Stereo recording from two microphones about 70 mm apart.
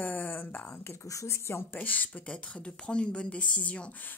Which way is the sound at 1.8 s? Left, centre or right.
Left.